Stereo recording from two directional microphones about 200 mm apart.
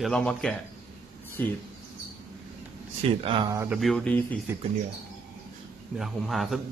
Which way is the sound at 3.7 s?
Centre (ahead or behind).